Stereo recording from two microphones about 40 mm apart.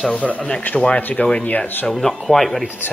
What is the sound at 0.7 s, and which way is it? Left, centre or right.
Speech, left.